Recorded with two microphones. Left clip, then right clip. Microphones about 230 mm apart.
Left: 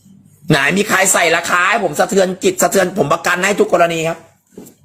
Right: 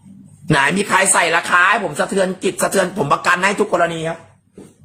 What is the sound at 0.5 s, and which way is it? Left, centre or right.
Speech, centre.